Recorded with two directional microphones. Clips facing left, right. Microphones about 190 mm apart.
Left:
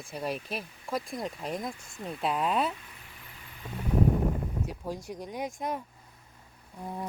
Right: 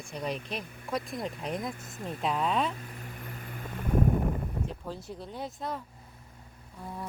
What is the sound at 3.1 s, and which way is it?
Vehicle, 50° right (ahead or behind).